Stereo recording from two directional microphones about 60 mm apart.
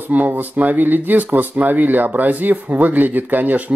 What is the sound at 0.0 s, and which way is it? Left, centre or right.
Speech, right.